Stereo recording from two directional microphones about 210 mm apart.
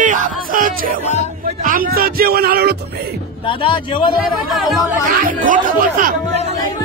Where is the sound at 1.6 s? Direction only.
40° right (ahead or behind).